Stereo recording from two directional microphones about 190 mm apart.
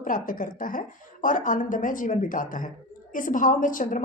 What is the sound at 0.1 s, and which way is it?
A woman's voice, 45° left (ahead or behind).